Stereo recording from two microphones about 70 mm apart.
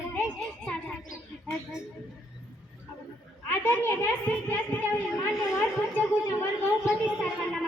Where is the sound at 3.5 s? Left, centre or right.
Left.